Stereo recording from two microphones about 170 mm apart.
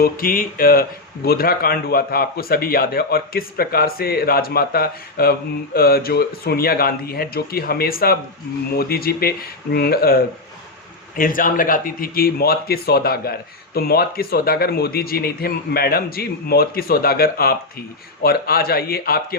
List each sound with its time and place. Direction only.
0.0 s speech: 60° left (ahead or behind)